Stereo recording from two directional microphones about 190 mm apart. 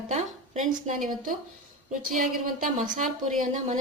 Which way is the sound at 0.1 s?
40° right (ahead or behind).